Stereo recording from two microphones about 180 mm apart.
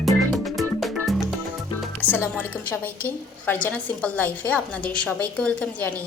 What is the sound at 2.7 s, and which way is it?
A woman's voice, 10° left (ahead or behind).